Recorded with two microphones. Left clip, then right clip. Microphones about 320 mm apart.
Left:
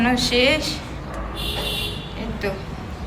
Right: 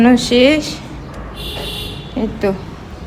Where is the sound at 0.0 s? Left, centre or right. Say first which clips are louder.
Right 7 dB; centre.